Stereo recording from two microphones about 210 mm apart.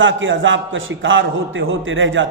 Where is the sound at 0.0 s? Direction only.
65° right (ahead or behind).